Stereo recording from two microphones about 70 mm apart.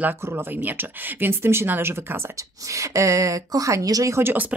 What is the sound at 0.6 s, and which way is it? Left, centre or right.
Speech, right.